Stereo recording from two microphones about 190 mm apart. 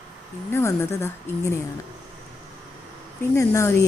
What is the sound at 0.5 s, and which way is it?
A woman's voice, 15° left (ahead or behind).